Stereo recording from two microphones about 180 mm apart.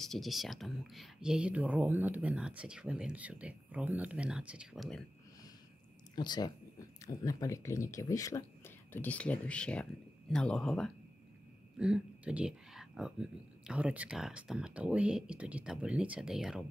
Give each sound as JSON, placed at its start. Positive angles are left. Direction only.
{"t": 0.0, "sound": "speech", "side_deg": 0}
{"t": 6.1, "sound": "speech", "side_deg": 25}